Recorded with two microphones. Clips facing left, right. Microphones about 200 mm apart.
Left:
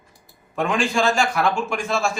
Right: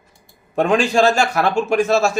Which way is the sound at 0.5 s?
40° right (ahead or behind).